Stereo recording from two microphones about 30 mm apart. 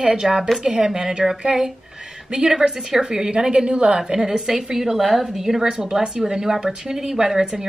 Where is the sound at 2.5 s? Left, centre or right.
Centre; by 4.0 s right.